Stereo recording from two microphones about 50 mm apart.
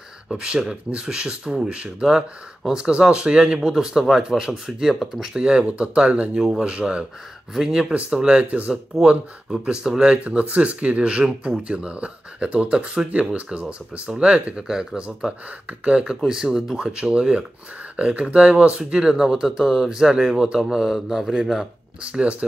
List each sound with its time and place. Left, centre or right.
0.3 s speech: centre
5.4 s speech: right
7.5 s speech: centre
7.9 s speech: right
9.5 s speech: centre
10.1 s speech: right; by 21.6 s centre
22.0 s speech: right